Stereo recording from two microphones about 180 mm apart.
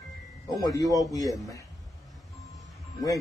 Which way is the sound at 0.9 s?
20° left (ahead or behind).